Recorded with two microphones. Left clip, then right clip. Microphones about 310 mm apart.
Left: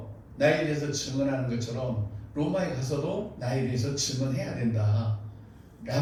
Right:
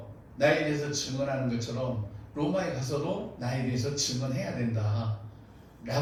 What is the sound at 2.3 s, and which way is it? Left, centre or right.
Speech, left.